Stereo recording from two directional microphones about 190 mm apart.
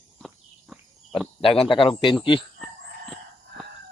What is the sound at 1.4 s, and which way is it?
Speech, 30° left (ahead or behind).